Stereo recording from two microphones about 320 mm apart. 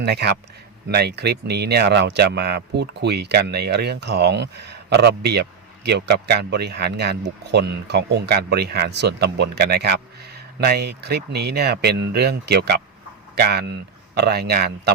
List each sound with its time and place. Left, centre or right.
0.0 s speech: right